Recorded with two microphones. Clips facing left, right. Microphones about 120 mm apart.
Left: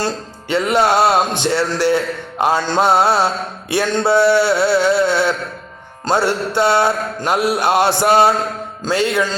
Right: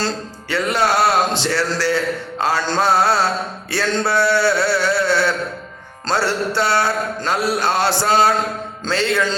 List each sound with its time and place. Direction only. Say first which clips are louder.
0.0 s a man's voice: left 2 dB; 20° left (ahead or behind)
6.1 s music: left 3 dB; 20° left (ahead or behind)